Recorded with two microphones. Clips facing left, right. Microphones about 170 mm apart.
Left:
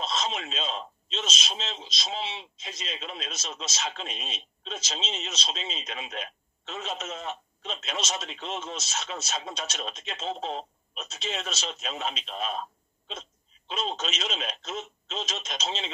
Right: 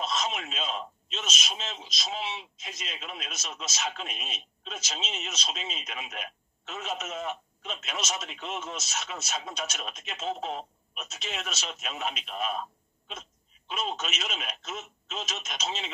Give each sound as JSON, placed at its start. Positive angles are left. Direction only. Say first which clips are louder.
{"t": 0.0, "sound": "a man's voice", "louder": "even", "side_deg": 30}